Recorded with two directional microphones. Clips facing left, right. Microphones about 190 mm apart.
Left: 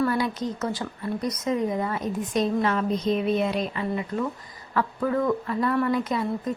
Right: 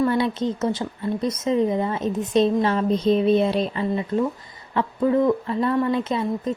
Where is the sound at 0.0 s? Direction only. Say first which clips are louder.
Right 4 dB; 25° right (ahead or behind).